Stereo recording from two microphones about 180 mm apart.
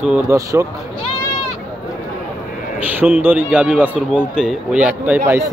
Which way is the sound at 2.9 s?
10° right (ahead or behind).